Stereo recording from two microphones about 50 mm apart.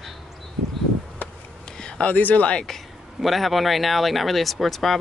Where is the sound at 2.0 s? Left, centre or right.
Left.